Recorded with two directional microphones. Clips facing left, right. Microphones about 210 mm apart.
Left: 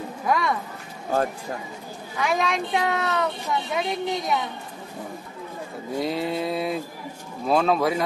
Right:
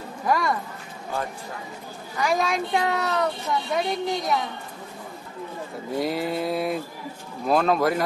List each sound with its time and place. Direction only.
0.2 s speech: centre (ahead or behind)
2.1 s speech: centre (ahead or behind)
5.9 s speech: centre (ahead or behind)